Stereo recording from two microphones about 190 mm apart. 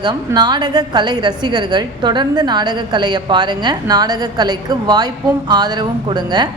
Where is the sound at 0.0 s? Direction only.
20° right (ahead or behind).